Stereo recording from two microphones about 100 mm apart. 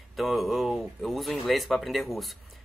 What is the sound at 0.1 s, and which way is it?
Speech, centre (ahead or behind).